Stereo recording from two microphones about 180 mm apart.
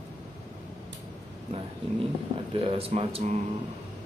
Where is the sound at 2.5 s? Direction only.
30° right (ahead or behind).